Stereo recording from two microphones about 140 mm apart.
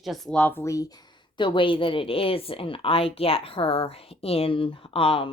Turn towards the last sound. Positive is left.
turn(degrees=40)  # may be behind; listen again after turning